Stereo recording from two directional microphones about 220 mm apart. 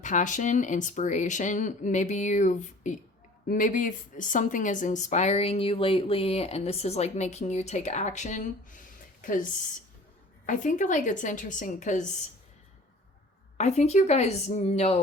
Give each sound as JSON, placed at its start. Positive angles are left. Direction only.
{"t": 0.0, "sound": "a woman's voice", "side_deg": 35}
{"t": 13.6, "sound": "a woman's voice", "side_deg": 30}